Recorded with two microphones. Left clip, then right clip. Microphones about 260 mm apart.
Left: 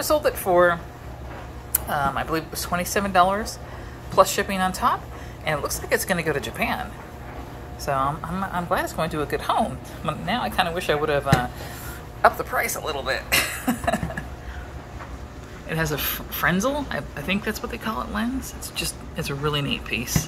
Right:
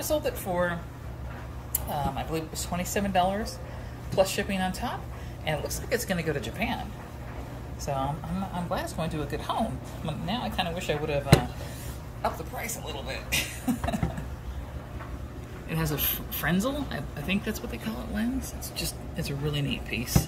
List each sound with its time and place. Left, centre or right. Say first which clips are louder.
0.2 s a woman's voice: left 10 dB; centre
1.9 s speech: left 8 dB; centre
7.8 s a woman's voice: left 7 dB; centre
12.8 s speech: left 10 dB; left
13.3 s speech: left 5 dB; centre
15.7 s a woman's voice: left 6 dB; centre